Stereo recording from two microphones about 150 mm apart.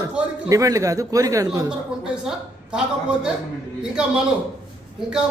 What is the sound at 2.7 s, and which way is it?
Speech, 5° right (ahead or behind).